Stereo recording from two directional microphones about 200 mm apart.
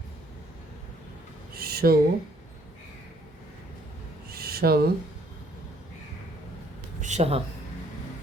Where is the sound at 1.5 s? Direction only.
50° right (ahead or behind).